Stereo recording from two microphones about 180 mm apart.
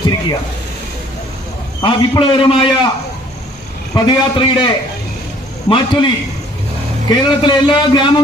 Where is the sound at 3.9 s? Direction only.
30° left (ahead or behind).